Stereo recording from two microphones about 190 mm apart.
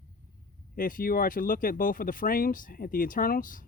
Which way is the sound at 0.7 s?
45° left (ahead or behind).